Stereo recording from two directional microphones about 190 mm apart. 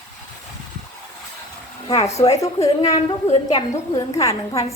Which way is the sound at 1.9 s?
35° left (ahead or behind).